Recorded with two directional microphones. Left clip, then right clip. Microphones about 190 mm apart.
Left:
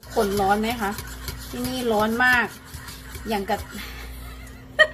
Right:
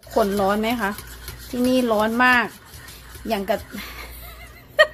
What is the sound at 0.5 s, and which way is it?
Speech, 55° right (ahead or behind).